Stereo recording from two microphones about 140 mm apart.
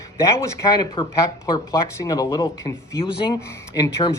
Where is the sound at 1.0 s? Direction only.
35° left (ahead or behind).